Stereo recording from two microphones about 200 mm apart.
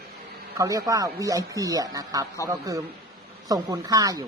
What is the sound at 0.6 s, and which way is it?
Speech, 15° right (ahead or behind).